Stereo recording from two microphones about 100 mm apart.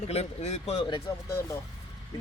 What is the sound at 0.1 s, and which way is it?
Speech, 90° left.